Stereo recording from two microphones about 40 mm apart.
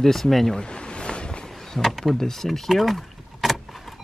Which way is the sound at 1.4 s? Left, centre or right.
Centre.